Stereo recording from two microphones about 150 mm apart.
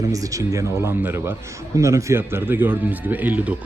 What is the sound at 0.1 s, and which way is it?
A man's voice, 20° right (ahead or behind).